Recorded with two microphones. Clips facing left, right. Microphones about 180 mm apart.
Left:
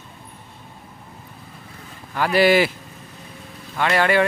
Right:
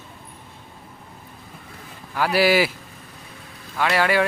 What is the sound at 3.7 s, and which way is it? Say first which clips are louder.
Speech: left 2 dB; 5° right (ahead or behind).